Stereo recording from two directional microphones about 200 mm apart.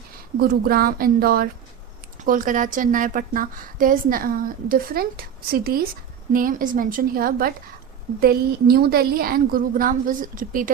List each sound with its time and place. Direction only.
0.3 s a woman's voice: 50° right (ahead or behind)